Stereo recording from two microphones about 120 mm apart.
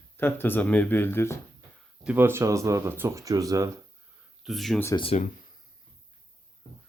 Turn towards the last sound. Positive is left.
turn(degrees=65)  # may be behind; listen again after turning